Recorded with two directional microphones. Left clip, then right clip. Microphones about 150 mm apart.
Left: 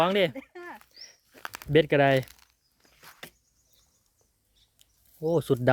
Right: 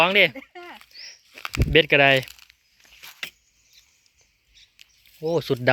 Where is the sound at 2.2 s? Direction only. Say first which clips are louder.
Right 10 dB; 55° right (ahead or behind).